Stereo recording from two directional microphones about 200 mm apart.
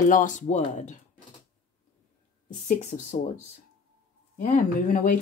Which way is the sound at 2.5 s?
35° left (ahead or behind).